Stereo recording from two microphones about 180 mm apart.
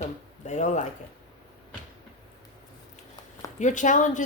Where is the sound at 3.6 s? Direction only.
45° left (ahead or behind).